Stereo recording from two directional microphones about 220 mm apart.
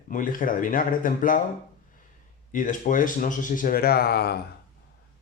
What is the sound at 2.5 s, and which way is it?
Speech, 35° left (ahead or behind).